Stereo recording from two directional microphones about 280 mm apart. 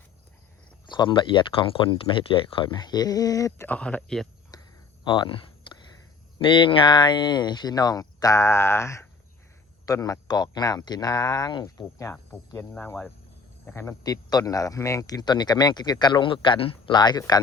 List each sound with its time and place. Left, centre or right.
0.9 s speech: centre
4.5 s a sound: centre
5.0 s speech: centre